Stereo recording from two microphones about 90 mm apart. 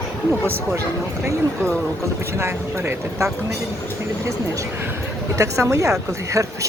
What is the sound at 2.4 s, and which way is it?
Speech, 30° right (ahead or behind).